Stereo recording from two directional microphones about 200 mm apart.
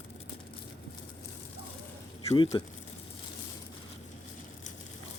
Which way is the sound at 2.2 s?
15° left (ahead or behind).